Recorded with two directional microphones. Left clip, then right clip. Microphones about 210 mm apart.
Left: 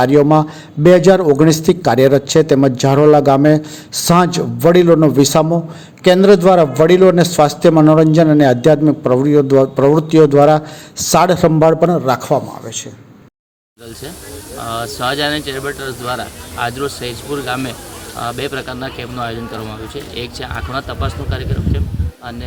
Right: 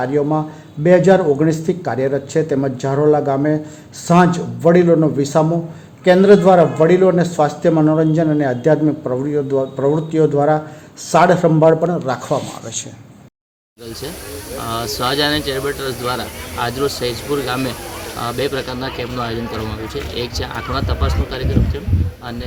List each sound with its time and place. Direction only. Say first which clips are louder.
0.0 s a man's voice: left 7 dB; 30° left (ahead or behind)
14.6 s speech: left 1 dB; centre (ahead or behind)